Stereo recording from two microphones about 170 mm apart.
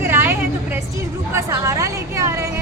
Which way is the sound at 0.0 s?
15° right (ahead or behind).